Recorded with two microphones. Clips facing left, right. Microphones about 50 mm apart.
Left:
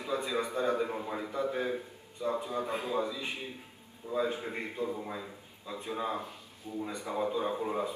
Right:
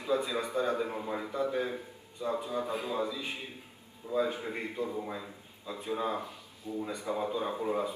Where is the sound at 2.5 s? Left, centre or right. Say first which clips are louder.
Even; left.